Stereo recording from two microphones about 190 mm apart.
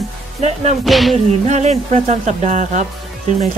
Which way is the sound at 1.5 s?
35° right (ahead or behind).